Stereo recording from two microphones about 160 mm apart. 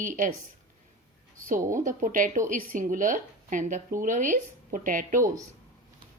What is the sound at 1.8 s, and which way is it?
Speech, 55° right (ahead or behind).